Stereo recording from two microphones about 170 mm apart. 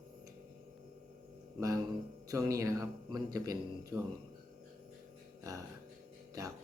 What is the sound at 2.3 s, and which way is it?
Speech, 20° right (ahead or behind).